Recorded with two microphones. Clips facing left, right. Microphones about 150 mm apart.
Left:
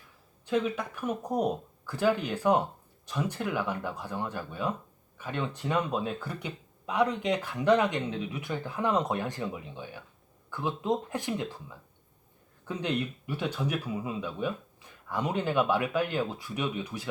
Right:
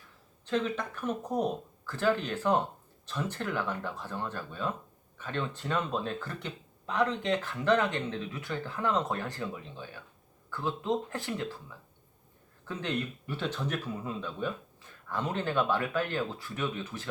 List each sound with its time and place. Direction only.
0.4 s speech: 10° left (ahead or behind)